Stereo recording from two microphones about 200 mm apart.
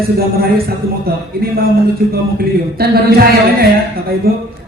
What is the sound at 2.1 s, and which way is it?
A man's voice, 50° right (ahead or behind).